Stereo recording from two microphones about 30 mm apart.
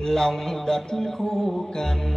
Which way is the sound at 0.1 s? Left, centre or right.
Centre.